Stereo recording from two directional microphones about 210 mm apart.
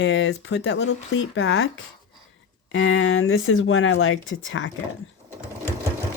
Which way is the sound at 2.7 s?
70° left (ahead or behind).